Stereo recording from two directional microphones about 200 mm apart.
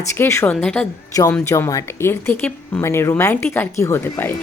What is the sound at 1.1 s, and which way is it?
Speech, 15° left (ahead or behind).